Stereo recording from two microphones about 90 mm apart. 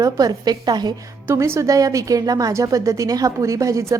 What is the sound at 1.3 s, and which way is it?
A woman's voice, 30° right (ahead or behind).